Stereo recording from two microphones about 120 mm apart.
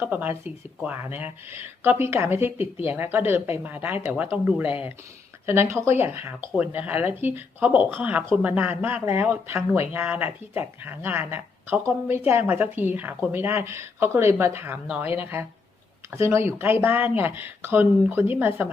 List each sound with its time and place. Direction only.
0.0 s a woman's voice: 15° right (ahead or behind)